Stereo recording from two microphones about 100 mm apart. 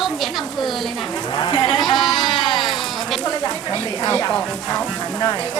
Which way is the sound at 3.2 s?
35° left (ahead or behind).